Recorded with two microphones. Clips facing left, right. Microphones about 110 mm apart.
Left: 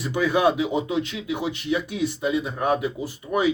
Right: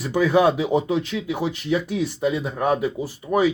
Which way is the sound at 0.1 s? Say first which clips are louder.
Right 3 dB; 35° right (ahead or behind).